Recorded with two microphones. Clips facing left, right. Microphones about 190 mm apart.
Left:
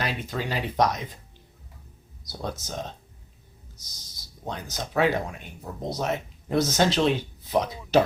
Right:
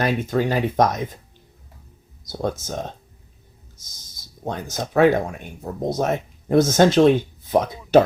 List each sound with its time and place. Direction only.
0.0 s speech: 50° right (ahead or behind)
2.3 s speech: 45° right (ahead or behind)
3.9 s speech: 50° right (ahead or behind)